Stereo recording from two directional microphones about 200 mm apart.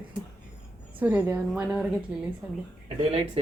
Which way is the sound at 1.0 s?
10° right (ahead or behind).